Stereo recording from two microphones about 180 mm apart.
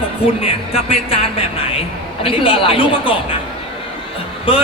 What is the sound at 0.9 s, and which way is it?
Speech, 30° left (ahead or behind).